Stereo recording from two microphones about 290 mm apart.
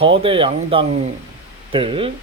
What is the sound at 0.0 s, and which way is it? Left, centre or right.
Speech, centre.